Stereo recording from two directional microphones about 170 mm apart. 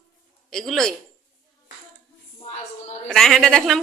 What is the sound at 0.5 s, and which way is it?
Speech, centre (ahead or behind).